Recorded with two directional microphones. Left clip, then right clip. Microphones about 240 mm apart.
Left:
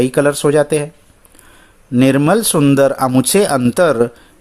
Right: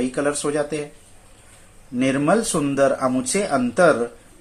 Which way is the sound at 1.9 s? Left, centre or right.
Left.